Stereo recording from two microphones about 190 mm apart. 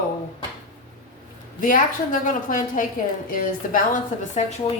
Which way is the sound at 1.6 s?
45° left (ahead or behind).